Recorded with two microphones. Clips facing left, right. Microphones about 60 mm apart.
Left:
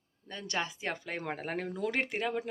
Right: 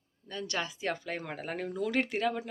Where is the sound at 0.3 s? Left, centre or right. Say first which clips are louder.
Even; left.